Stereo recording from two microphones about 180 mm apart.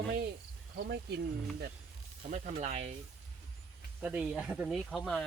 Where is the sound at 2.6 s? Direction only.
35° right (ahead or behind).